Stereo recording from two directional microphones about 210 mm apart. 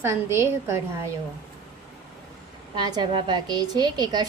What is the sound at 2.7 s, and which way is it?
A woman's voice, 20° right (ahead or behind).